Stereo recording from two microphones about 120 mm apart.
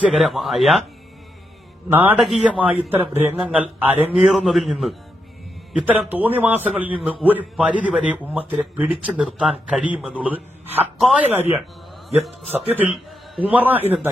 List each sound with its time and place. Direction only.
0.0 s a man's voice: centre (ahead or behind)
1.9 s a man's voice: 15° right (ahead or behind)
2.1 s a man's voice: centre (ahead or behind)
2.5 s a man's voice: 10° right (ahead or behind)
5.7 s a man's voice: 15° right (ahead or behind)
12.7 s a man's voice: 15° right (ahead or behind)